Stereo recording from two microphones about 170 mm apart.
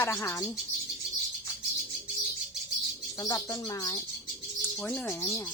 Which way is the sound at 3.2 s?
20° left (ahead or behind).